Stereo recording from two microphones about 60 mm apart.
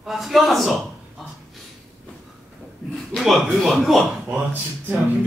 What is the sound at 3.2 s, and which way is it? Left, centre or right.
Speech, centre.